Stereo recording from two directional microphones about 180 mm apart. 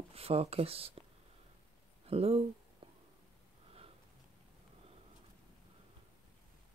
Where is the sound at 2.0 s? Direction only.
35° right (ahead or behind).